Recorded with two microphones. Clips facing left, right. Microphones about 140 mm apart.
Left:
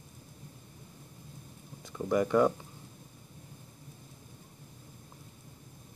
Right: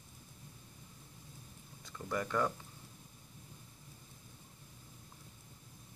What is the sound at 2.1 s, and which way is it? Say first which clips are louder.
Speech: left 9 dB; 15° left (ahead or behind).